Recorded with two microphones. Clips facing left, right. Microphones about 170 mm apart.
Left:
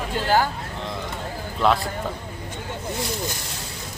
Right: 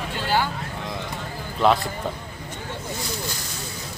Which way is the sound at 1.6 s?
Centre (ahead or behind).